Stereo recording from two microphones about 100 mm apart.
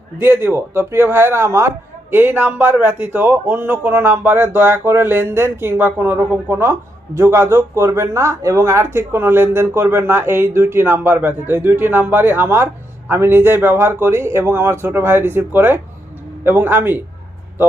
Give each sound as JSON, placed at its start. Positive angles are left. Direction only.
{"t": 0.2, "sound": "a man's voice", "side_deg": -20}